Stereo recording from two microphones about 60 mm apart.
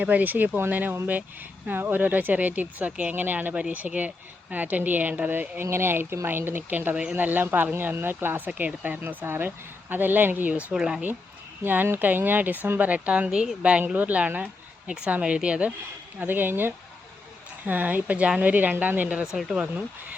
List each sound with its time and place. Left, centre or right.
0.0 s speech: right
6.9 s speech: centre
7.2 s speech: right; by 11.0 s centre
11.6 s speech: right; by 15.7 s centre
16.2 s speech: right